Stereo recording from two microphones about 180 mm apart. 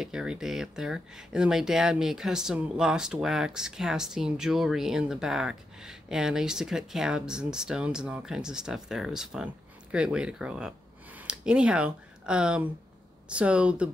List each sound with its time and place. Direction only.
0.0 s speech: 5° right (ahead or behind)